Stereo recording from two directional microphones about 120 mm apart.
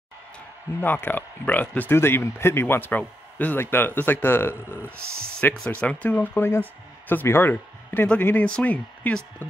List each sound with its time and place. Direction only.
0.7 s speech: 15° left (ahead or behind)